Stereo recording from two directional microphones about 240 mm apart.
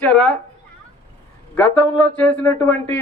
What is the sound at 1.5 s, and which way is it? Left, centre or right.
Speech, centre.